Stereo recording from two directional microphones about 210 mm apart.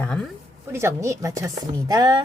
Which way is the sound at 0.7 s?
10° right (ahead or behind).